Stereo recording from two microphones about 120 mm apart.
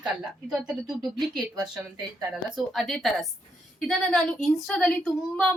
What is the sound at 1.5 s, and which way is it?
Speech, 35° right (ahead or behind).